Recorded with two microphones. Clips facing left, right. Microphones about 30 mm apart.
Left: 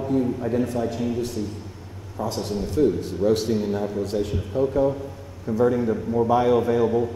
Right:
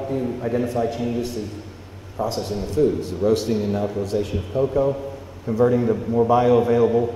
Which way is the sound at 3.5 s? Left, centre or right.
Right.